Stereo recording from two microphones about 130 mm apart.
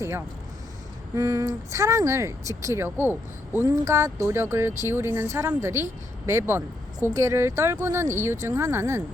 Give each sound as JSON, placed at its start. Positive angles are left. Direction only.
{"t": 1.1, "sound": "speech", "side_deg": -25}